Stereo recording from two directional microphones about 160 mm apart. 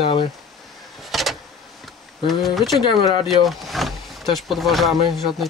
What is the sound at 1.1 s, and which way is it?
Vehicle, centre (ahead or behind).